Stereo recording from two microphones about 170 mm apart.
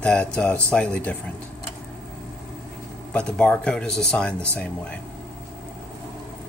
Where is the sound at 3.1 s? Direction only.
5° left (ahead or behind).